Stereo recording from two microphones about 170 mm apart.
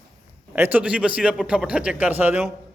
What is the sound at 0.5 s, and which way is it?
Speech, 10° right (ahead or behind).